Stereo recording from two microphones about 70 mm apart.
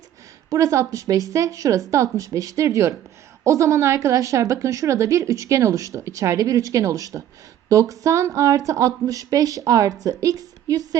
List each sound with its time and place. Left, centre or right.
0.5 s a woman's voice: right